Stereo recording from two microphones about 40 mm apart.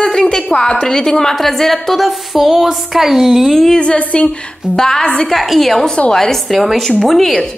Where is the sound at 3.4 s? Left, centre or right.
Centre.